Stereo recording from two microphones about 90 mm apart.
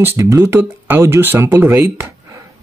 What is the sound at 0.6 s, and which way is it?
Speech, 25° right (ahead or behind).